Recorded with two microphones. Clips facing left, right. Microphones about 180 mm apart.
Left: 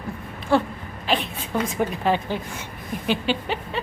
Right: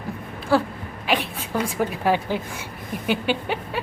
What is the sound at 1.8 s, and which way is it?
Speech, 10° right (ahead or behind).